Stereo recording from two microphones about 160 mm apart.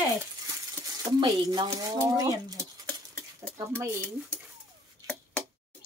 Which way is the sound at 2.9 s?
5° left (ahead or behind).